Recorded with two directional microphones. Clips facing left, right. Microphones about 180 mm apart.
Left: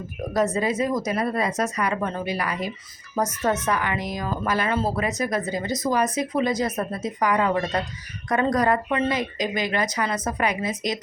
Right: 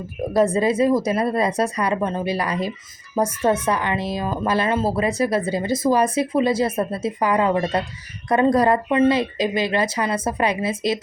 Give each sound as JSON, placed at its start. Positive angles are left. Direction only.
{"t": 0.3, "sound": "speech", "side_deg": -30}
{"t": 2.0, "sound": "speech", "side_deg": -20}
{"t": 2.3, "sound": "speech", "side_deg": -35}